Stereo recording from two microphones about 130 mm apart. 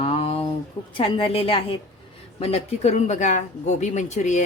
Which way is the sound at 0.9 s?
45° left (ahead or behind).